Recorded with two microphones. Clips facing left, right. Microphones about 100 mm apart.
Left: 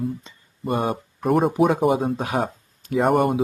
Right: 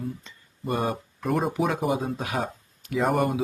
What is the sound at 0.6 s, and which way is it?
Speech, centre (ahead or behind).